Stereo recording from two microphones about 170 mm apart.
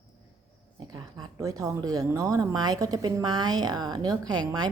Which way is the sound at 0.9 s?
20° right (ahead or behind).